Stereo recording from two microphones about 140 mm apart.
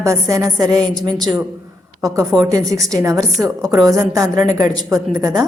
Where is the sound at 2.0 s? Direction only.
25° right (ahead or behind).